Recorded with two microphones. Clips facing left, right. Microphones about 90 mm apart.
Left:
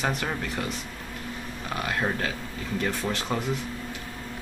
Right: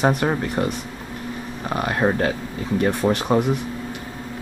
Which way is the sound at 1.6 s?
40° right (ahead or behind).